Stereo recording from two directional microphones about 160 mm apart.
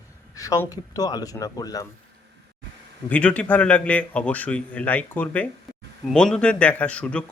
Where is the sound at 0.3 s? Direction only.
20° left (ahead or behind).